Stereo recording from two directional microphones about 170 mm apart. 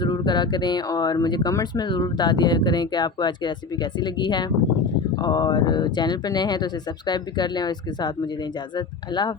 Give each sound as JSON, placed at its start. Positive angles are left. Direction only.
{"t": 0.0, "sound": "speech", "side_deg": 25}